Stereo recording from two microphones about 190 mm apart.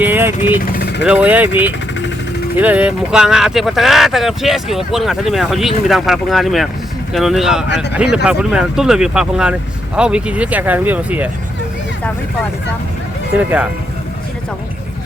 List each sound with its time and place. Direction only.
0.0 s vehicle: 10° right (ahead or behind)
0.6 s vehicle: 55° left (ahead or behind)
1.0 s speech: 5° right (ahead or behind)